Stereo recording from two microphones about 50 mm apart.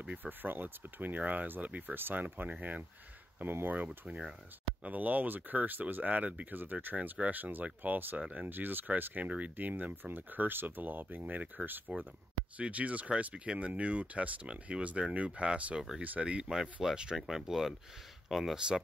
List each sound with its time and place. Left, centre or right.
0.2 s speech: right
3.6 s speech: right; by 17.4 s centre
17.4 s speech: centre